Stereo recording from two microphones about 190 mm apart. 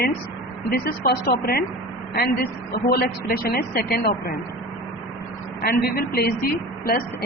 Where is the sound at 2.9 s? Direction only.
50° left (ahead or behind).